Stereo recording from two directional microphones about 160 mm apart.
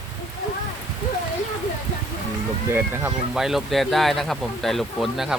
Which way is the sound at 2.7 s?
15° right (ahead or behind).